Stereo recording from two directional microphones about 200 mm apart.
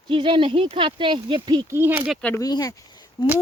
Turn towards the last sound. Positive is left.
turn(degrees=20)  # may be behind; listen again after turning